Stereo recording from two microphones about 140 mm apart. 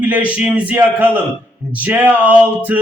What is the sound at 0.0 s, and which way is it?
A man's voice, 10° right (ahead or behind).